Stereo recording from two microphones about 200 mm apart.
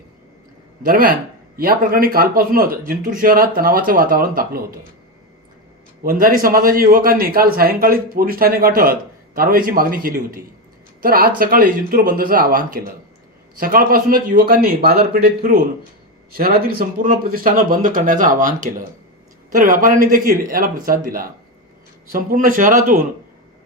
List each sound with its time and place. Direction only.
0.9 s a man's voice: 45° right (ahead or behind)
6.0 s a man's voice: 45° right (ahead or behind)